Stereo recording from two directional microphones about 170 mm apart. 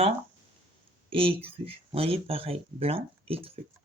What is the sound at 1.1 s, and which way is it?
Speech, 30° right (ahead or behind).